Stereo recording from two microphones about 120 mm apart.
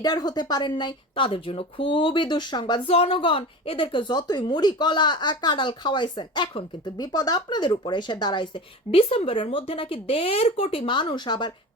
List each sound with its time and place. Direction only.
0.0 s a woman's voice: 35° left (ahead or behind)
2.8 s a woman's voice: 50° left (ahead or behind)